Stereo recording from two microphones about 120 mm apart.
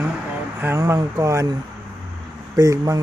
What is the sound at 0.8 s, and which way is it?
Speech, 30° right (ahead or behind).